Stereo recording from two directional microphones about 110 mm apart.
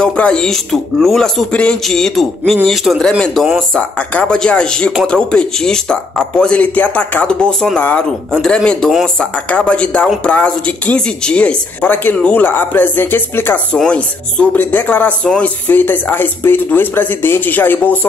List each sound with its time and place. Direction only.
0.0 s speech: 10° left (ahead or behind)